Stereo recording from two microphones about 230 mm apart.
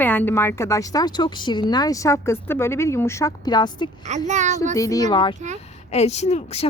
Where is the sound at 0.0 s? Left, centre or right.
Centre.